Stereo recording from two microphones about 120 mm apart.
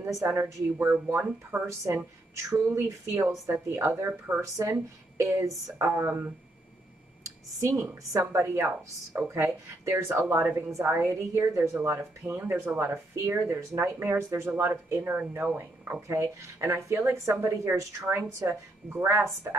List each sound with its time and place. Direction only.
0.3 s speech: 15° right (ahead or behind)